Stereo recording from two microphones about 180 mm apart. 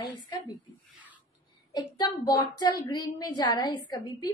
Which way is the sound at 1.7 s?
20° left (ahead or behind).